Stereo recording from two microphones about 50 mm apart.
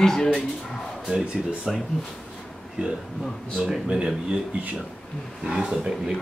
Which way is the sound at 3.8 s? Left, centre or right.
Centre.